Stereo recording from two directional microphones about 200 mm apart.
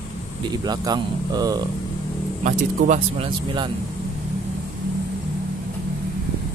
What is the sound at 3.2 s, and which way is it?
Speech, 25° right (ahead or behind).